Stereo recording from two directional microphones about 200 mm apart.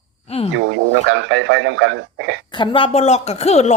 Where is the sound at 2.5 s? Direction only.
25° left (ahead or behind).